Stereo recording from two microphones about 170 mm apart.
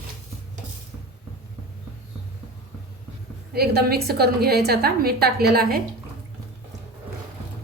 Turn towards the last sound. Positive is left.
turn(degrees=-65)  # may be behind; listen again after turning